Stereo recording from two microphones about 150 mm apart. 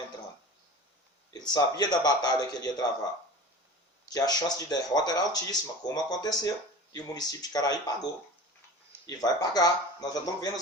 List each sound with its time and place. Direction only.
1.3 s speech: 25° left (ahead or behind)
4.1 s speech: 25° left (ahead or behind)
9.0 s speech: 25° left (ahead or behind)